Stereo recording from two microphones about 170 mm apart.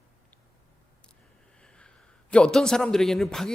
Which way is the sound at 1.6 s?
5° left (ahead or behind).